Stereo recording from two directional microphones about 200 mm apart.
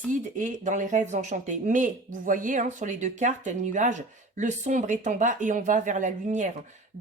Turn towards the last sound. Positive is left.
turn(degrees=-40)  # may be behind; listen again after turning